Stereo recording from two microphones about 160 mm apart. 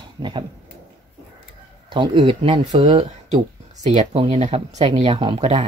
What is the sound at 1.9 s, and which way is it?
Speech, 30° right (ahead or behind).